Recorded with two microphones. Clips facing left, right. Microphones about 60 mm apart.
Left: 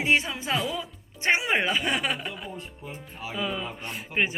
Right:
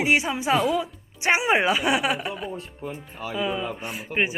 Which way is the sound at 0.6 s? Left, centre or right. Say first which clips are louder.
Right 7 dB; right.